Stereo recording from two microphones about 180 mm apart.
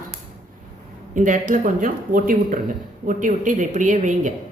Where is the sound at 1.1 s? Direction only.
45° right (ahead or behind).